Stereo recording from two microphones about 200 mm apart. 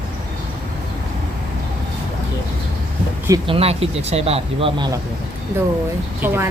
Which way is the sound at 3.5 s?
30° right (ahead or behind).